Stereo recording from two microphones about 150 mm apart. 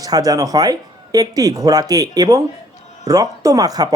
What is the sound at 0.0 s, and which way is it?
Speech, 25° right (ahead or behind).